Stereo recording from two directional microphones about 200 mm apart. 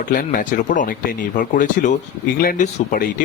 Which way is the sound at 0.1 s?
45° left (ahead or behind).